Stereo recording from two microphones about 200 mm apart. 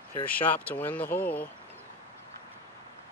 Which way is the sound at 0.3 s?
10° left (ahead or behind).